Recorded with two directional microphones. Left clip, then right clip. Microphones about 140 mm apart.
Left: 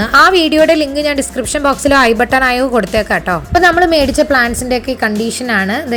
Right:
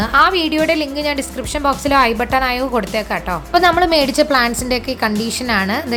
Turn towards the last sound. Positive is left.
turn(degrees=15)  # may be behind; listen again after turning